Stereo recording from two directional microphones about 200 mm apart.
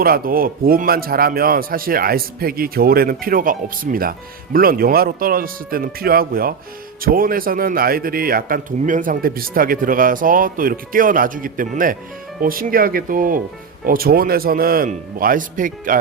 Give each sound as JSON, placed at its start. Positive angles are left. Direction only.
{"t": 0.0, "sound": "speech", "side_deg": -45}